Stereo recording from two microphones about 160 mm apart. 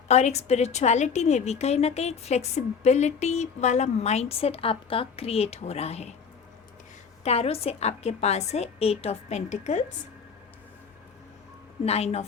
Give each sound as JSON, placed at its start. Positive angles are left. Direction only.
{"t": 0.1, "sound": "a woman's voice", "side_deg": 45}
{"t": 7.3, "sound": "a woman's voice", "side_deg": 40}
{"t": 11.9, "sound": "a woman's voice", "side_deg": 40}